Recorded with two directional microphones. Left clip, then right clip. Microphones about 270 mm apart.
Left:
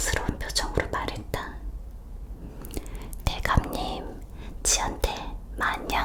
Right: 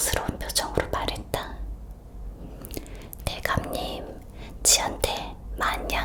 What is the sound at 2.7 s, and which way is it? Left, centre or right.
Whispering, left.